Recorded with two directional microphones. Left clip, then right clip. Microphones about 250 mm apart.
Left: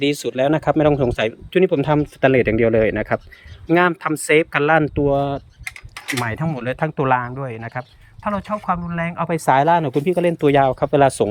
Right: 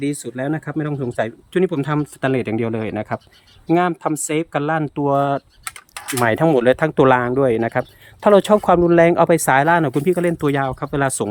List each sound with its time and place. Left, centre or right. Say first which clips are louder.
0.1 s speech: left 6 dB; centre
4.9 s speech: right 1 dB; centre